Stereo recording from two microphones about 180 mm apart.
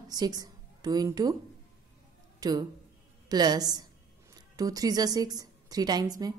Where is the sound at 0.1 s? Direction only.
20° right (ahead or behind).